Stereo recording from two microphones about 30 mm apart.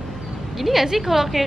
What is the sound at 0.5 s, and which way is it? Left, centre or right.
Speech, centre.